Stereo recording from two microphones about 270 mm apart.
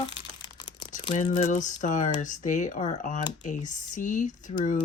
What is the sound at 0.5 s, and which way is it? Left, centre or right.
Speech, centre.